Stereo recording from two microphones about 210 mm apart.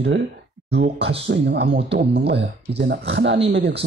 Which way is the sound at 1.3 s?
50° right (ahead or behind).